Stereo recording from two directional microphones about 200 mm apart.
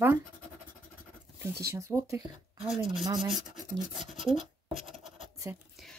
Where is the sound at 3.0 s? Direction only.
20° right (ahead or behind).